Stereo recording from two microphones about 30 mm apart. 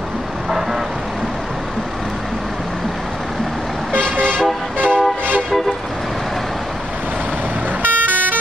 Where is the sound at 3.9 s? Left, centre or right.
Right.